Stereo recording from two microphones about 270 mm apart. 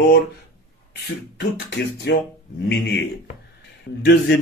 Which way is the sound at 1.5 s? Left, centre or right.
Left.